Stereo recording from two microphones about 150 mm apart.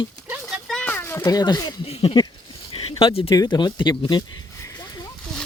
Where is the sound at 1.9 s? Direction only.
40° left (ahead or behind).